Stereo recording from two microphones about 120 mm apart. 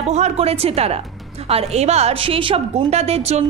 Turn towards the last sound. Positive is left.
turn(degrees=-60)  # may be behind; listen again after turning